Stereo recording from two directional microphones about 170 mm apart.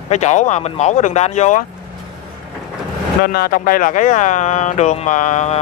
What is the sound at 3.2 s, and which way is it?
Speech, 60° left (ahead or behind).